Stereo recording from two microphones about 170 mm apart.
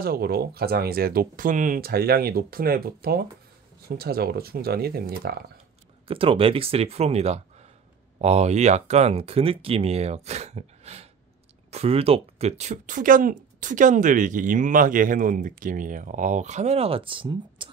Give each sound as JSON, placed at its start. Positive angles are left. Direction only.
{"t": 0.0, "sound": "speech", "side_deg": -65}
{"t": 6.0, "sound": "speech", "side_deg": -30}